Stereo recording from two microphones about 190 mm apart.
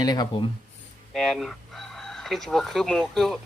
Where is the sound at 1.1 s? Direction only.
Centre (ahead or behind).